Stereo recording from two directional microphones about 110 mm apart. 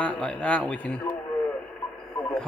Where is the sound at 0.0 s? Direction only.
10° left (ahead or behind).